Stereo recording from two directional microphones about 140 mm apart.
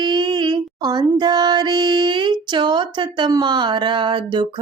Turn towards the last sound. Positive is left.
turn(degrees=-35)  # may be behind; listen again after turning